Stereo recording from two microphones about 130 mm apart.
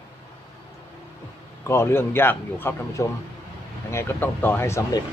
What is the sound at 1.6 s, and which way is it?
Speech, 20° left (ahead or behind).